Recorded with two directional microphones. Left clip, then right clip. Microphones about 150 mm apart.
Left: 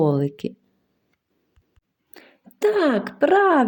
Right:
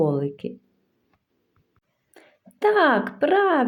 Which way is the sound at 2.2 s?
40° left (ahead or behind).